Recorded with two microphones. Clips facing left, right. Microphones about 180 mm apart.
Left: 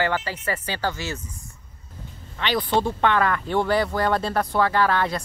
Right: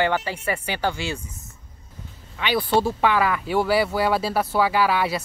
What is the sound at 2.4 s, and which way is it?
Speech, 10° right (ahead or behind).